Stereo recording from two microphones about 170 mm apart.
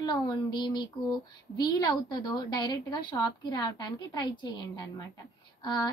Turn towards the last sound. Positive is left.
turn(degrees=25)  # may be behind; listen again after turning